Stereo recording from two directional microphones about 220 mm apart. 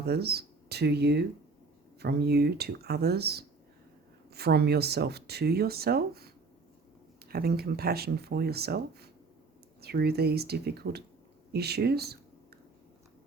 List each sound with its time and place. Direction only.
0.0 s speech: 45° right (ahead or behind)